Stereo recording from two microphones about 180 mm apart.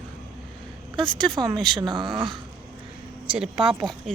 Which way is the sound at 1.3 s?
25° right (ahead or behind).